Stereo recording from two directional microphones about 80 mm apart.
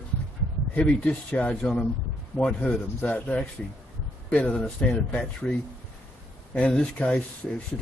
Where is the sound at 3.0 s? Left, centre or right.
Centre.